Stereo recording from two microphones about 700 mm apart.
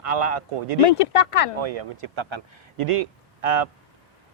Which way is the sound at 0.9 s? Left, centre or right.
Left.